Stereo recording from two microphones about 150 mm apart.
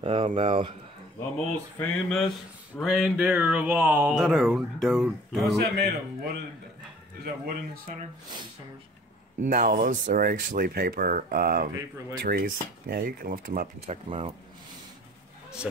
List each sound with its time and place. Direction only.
0.0 s speech: 35° right (ahead or behind)
1.8 s speech: 5° left (ahead or behind)
4.1 s speech: centre (ahead or behind)
5.8 s speech: 90° right
7.4 s speech: 80° right
9.4 s speech: 60° right (ahead or behind); by 13.4 s 85° right
13.8 s speech: 45° right (ahead or behind)